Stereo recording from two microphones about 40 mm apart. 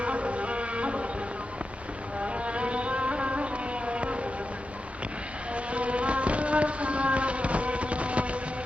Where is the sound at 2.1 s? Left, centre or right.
Right.